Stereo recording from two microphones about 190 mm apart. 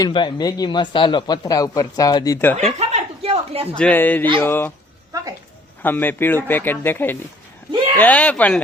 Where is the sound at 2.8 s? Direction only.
35° right (ahead or behind).